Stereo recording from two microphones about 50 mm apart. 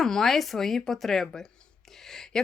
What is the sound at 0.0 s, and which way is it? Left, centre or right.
Speech, centre.